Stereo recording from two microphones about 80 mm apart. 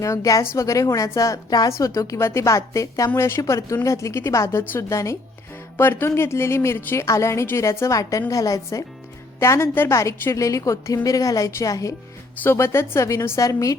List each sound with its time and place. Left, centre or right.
0.0 s a woman's voice: left
5.7 s a woman's voice: left
9.4 s a woman's voice: left
12.4 s a woman's voice: left